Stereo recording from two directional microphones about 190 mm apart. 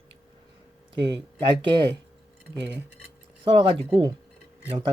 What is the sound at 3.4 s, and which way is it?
Speech, 25° right (ahead or behind).